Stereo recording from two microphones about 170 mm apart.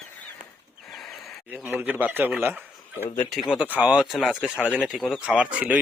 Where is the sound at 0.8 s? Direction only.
Centre (ahead or behind).